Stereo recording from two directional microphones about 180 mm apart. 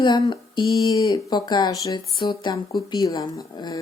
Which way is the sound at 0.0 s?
25° left (ahead or behind).